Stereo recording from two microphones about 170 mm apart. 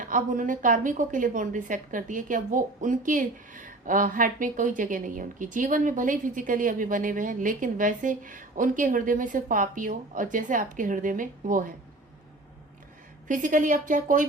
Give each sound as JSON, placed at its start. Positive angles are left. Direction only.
{"t": 0.0, "sound": "a woman's voice", "side_deg": -50}
{"t": 13.2, "sound": "a woman's voice", "side_deg": -50}